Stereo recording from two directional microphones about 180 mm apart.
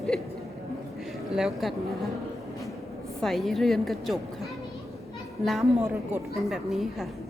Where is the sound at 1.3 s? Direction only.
Centre (ahead or behind).